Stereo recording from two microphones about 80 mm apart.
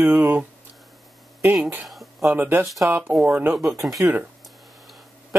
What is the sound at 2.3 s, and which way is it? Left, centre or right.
Speech, right.